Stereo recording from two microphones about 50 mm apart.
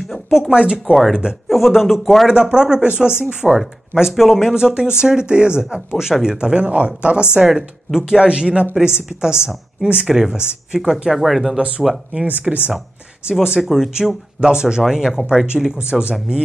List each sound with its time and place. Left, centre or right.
0.3 s speech: centre
1.5 s a man's voice: centre
2.5 s speech: centre
7.3 s a man's voice: centre
11.5 s speech: right
13.6 s a man's voice: centre